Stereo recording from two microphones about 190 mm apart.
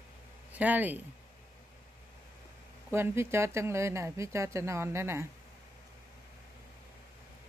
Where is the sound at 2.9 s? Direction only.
15° right (ahead or behind).